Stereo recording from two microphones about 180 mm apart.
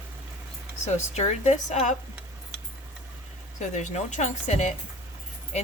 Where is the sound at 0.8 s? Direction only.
40° left (ahead or behind).